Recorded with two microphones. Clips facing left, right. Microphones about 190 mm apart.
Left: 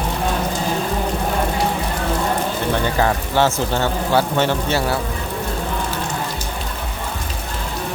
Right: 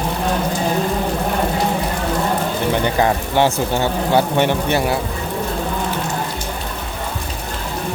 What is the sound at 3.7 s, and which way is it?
Speech, 15° right (ahead or behind).